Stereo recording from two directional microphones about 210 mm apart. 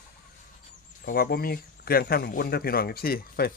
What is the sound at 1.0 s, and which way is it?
Speech, 45° left (ahead or behind).